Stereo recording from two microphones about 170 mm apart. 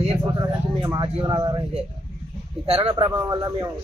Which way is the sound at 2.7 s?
35° right (ahead or behind).